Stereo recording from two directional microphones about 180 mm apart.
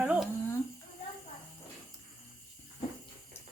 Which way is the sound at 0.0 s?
5° right (ahead or behind).